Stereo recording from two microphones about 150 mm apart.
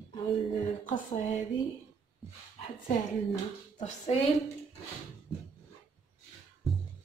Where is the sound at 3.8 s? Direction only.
45° left (ahead or behind).